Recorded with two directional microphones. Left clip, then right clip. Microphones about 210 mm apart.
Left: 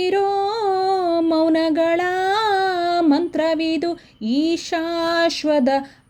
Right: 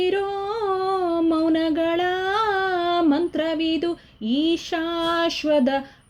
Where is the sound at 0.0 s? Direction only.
15° left (ahead or behind).